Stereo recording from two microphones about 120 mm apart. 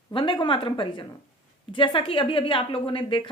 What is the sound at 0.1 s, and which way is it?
A woman's voice, 45° left (ahead or behind).